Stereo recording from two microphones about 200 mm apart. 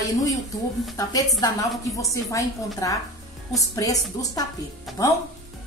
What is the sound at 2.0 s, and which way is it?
A woman's voice, 15° left (ahead or behind).